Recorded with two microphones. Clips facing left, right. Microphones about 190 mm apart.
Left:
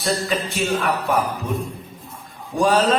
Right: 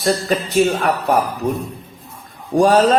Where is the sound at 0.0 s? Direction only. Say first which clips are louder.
Right 4 dB; 40° right (ahead or behind).